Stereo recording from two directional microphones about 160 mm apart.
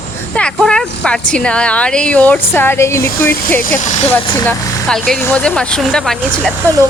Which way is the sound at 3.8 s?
50° left (ahead or behind).